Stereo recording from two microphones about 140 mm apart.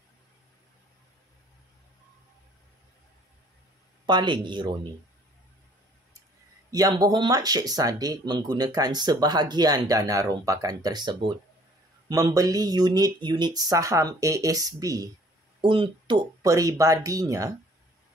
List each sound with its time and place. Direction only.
4.0 s speech: 30° right (ahead or behind)
6.7 s speech: 25° right (ahead or behind)
15.6 s speech: 35° right (ahead or behind)